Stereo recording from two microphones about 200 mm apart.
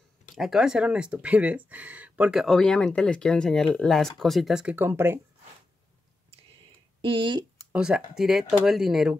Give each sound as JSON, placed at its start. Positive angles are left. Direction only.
{"t": 0.4, "sound": "speech", "side_deg": 0}
{"t": 7.0, "sound": "speech", "side_deg": -25}
{"t": 7.7, "sound": "speech", "side_deg": -5}